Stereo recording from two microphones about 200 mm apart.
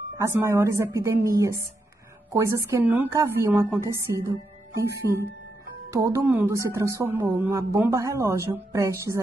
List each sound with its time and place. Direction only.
0.2 s speech: 15° right (ahead or behind)
5.9 s speech: 15° right (ahead or behind)